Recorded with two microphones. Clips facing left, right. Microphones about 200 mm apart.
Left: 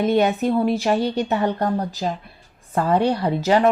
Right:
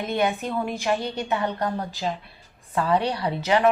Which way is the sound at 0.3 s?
40° left (ahead or behind).